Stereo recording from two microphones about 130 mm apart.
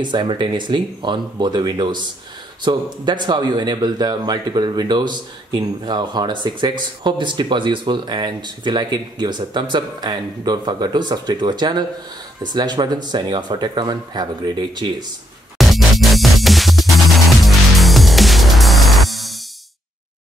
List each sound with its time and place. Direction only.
0.0 s speech: 35° right (ahead or behind)
15.5 s music: centre (ahead or behind)